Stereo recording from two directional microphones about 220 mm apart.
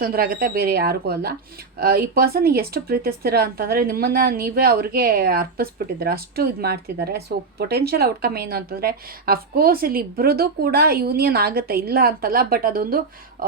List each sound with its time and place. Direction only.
0.0 s speech: 40° right (ahead or behind)